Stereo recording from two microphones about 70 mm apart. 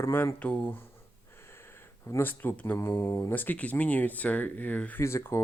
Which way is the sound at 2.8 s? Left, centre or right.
Left.